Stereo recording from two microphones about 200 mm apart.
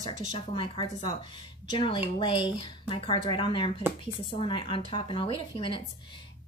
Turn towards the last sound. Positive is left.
turn(degrees=25)  # may be behind; listen again after turning